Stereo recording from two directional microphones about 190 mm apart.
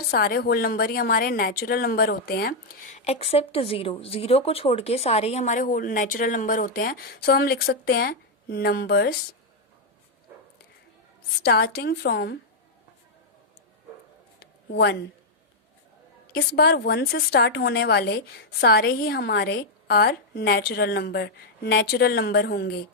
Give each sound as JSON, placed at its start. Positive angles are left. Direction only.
{"t": 0.1, "sound": "a woman's voice", "side_deg": 55}
{"t": 2.9, "sound": "a woman's voice", "side_deg": 35}
{"t": 11.4, "sound": "a woman's voice", "side_deg": 55}
{"t": 14.3, "sound": "a sound", "side_deg": 55}
{"t": 16.3, "sound": "a woman's voice", "side_deg": 55}